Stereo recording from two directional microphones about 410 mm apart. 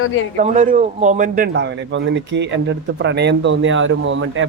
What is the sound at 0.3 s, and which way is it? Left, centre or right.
A man's voice, centre.